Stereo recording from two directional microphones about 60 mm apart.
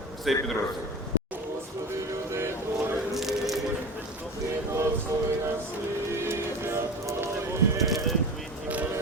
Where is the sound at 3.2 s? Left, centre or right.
Centre.